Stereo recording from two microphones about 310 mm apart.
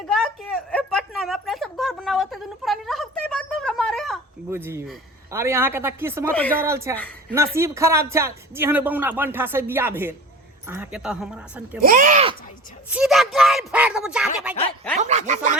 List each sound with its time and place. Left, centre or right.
0.1 s a sound: centre
6.3 s speech: centre
6.7 s a man's voice: centre
11.8 s speech: right
12.9 s speech: centre
14.9 s speech: right